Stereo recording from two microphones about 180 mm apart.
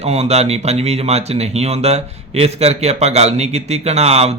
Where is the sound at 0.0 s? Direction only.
35° right (ahead or behind).